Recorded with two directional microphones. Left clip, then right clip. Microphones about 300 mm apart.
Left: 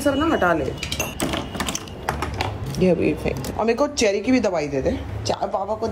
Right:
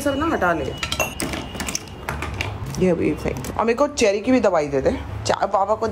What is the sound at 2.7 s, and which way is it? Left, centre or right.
A woman's voice, centre.